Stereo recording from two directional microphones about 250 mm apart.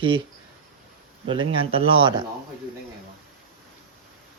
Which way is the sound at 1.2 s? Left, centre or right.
Centre.